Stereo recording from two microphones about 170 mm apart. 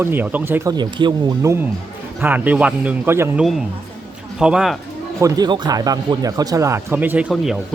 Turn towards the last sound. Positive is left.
turn(degrees=0)  # may be behind; listen again after turning